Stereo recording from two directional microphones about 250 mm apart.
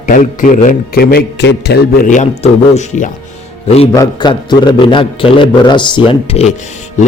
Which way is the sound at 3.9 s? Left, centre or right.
Centre.